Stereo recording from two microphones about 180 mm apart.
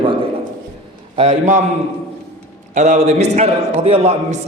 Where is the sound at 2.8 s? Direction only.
40° right (ahead or behind).